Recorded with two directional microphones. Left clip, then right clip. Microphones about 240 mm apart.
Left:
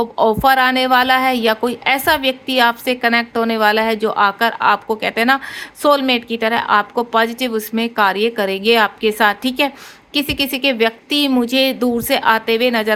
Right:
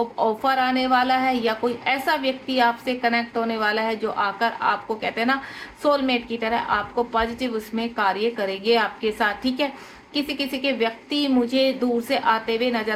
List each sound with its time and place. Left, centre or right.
0.0 s a woman's voice: left